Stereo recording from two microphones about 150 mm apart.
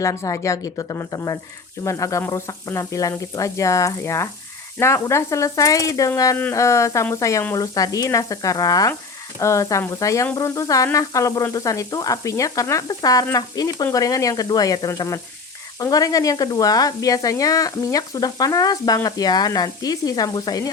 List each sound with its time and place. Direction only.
0.0 s speech: 20° left (ahead or behind)